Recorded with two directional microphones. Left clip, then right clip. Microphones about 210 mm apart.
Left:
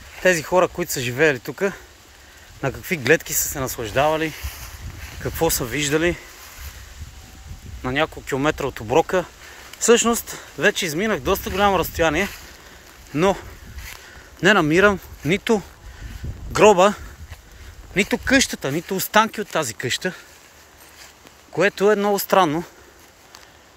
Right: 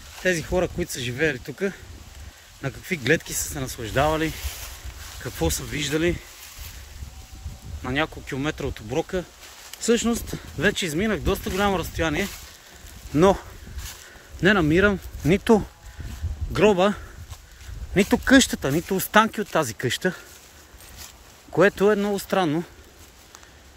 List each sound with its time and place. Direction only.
0.2 s speech: 5° right (ahead or behind)
7.8 s speech: 10° right (ahead or behind)
13.1 s speech: 20° right (ahead or behind)
14.4 s speech: 10° right (ahead or behind)
16.5 s speech: 10° right (ahead or behind)
17.9 s speech: 25° right (ahead or behind)
21.5 s speech: 20° right (ahead or behind)